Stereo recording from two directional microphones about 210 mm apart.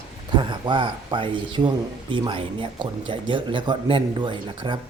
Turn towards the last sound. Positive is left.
turn(degrees=-20)  # may be behind; listen again after turning